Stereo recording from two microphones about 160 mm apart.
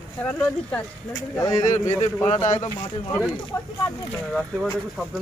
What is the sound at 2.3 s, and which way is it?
Speech, 40° left (ahead or behind).